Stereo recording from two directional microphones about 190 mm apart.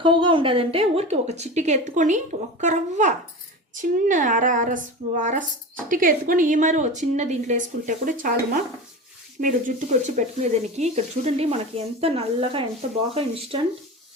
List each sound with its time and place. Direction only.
0.0 s a woman's voice: 25° right (ahead or behind); by 8.3 s 45° right (ahead or behind)
9.4 s a woman's voice: 45° right (ahead or behind); by 13.7 s 30° right (ahead or behind)